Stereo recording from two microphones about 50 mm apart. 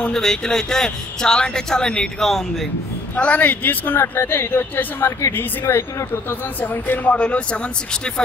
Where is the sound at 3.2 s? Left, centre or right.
Left.